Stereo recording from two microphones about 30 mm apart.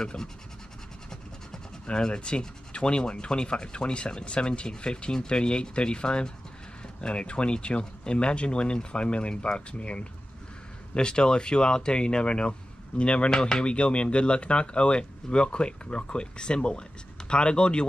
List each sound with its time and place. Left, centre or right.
0.0 s speech: left
1.9 s speech: left
11.0 s speech: left
13.3 s speech: left